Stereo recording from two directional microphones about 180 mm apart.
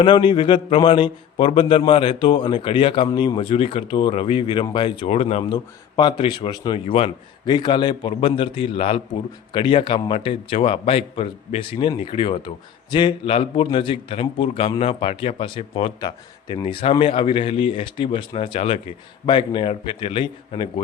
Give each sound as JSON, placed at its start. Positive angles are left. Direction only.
{"t": 0.0, "sound": "a man's voice", "side_deg": 25}